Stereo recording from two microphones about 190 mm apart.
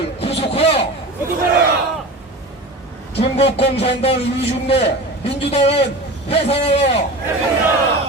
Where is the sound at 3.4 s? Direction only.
30° left (ahead or behind).